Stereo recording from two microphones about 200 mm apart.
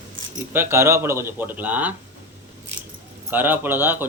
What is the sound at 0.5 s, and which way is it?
Speech, 10° right (ahead or behind).